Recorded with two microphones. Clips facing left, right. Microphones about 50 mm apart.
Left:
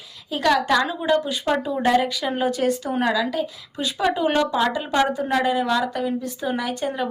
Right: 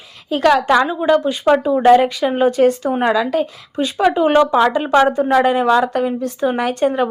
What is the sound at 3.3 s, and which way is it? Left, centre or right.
Speech, right.